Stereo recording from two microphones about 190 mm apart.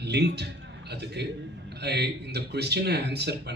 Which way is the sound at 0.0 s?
60° right (ahead or behind).